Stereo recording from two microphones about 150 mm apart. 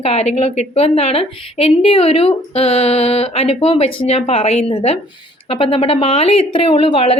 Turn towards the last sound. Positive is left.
turn(degrees=40)  # may be behind; listen again after turning